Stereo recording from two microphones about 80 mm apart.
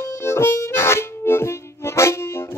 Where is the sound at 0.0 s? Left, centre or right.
Left.